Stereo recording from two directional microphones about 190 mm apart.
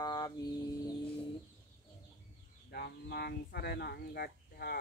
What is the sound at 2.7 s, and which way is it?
Speech, 60° left (ahead or behind).